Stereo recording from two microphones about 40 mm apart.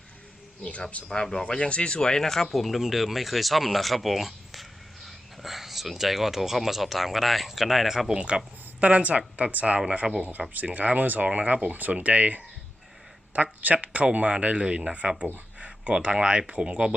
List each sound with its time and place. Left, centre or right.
1.0 s speech: centre
1.5 s speech: left
2.0 s speech: centre
2.5 s speech: centre
8.8 s speech: right
10.0 s speech: centre
10.5 s speech: right
11.3 s speech: right
13.3 s a sound: right
13.8 s speech: right
15.5 s a sound: right
16.0 s speech: right